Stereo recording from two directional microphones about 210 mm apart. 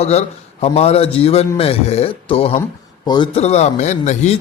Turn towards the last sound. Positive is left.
turn(degrees=35)  # may be behind; listen again after turning